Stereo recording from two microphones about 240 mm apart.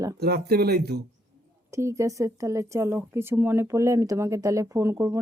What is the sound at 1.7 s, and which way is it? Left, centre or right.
Speech, centre.